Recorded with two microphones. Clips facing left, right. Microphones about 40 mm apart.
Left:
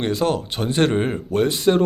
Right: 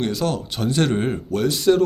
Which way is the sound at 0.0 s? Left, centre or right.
Left.